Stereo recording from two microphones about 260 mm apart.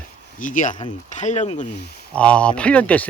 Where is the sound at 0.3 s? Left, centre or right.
Left.